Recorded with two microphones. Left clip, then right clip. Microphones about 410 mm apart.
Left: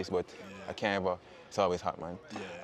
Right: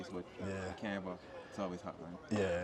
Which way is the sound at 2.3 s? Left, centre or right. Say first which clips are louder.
Right 13 dB; right.